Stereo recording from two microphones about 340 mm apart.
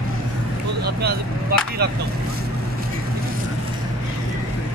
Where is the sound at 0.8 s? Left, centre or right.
Right.